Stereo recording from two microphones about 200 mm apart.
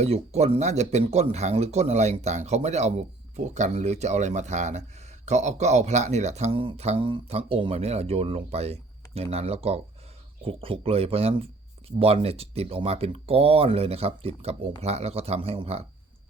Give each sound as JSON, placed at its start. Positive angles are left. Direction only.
{"t": 0.0, "sound": "speech", "side_deg": -30}